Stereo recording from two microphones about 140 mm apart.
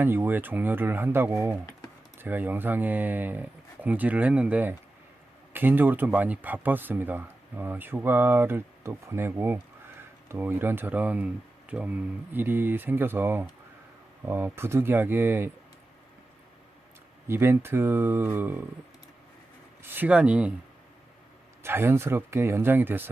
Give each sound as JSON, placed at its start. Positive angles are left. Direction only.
{"t": 0.0, "sound": "speech", "side_deg": -15}
{"t": 17.2, "sound": "speech", "side_deg": -15}
{"t": 19.8, "sound": "speech", "side_deg": -15}
{"t": 21.6, "sound": "speech", "side_deg": -15}